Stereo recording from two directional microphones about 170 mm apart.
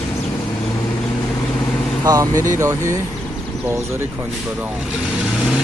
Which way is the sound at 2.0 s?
20° right (ahead or behind).